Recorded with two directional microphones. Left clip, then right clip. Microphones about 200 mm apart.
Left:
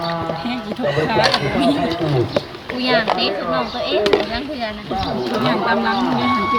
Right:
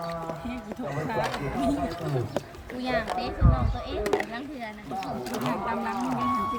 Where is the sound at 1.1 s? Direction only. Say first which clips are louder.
Left 11 dB; 35° left (ahead or behind).